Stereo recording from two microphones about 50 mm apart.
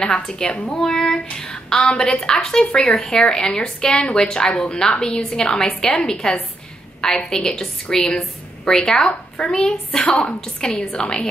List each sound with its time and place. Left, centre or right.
0.0 s a woman's voice: centre